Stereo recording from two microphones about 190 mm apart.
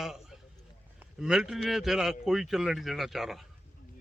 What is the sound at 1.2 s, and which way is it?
Speech, 5° right (ahead or behind).